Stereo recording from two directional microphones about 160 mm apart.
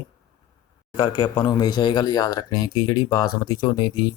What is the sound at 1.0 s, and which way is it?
Speech, 20° left (ahead or behind).